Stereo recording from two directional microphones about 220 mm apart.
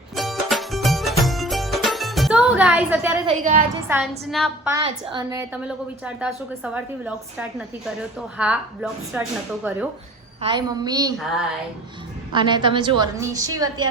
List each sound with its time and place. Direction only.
0.2 s music: centre (ahead or behind)
3.2 s a woman's voice: 30° right (ahead or behind)
3.8 s a woman's voice: 10° right (ahead or behind)
5.1 s a woman's voice: 15° right (ahead or behind)
6.1 s a woman's voice: 5° right (ahead or behind)
10.4 s a woman's voice: 20° right (ahead or behind)
11.2 s a woman's voice: centre (ahead or behind)
12.3 s a woman's voice: 20° right (ahead or behind)